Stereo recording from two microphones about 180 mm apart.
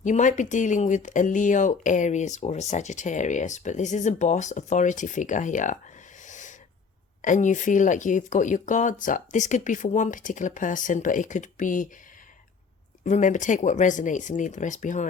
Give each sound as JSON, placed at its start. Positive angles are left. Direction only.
{"t": 0.0, "sound": "speech", "side_deg": 45}
{"t": 6.2, "sound": "owl", "side_deg": 45}
{"t": 7.2, "sound": "speech", "side_deg": 45}
{"t": 13.1, "sound": "speech", "side_deg": 45}